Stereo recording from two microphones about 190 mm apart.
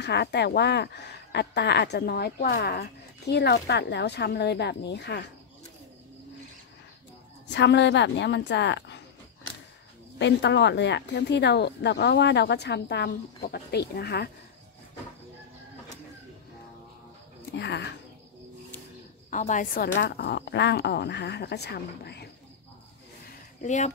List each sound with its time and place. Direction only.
0.0 s speech: 60° left (ahead or behind)
7.4 s a woman's voice: 65° left (ahead or behind)
10.1 s speech: 65° left (ahead or behind)
17.6 s speech: 65° left (ahead or behind)
19.3 s a woman's voice: 40° left (ahead or behind)
20.0 s speech: 60° left (ahead or behind)
23.6 s speech: 40° left (ahead or behind)